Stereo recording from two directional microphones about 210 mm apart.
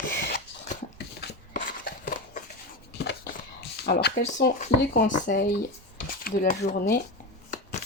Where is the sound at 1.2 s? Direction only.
45° left (ahead or behind).